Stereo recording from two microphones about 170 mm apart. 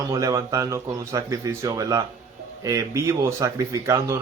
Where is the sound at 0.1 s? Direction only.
20° right (ahead or behind).